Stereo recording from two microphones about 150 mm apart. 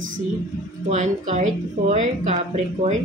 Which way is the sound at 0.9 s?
55° right (ahead or behind).